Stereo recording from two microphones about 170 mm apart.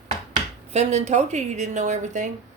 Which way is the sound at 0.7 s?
40° right (ahead or behind).